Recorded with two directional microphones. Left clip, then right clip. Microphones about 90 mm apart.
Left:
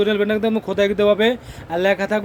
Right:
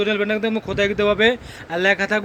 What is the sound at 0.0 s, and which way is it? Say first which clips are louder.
Speech: left 2 dB; 45° left (ahead or behind).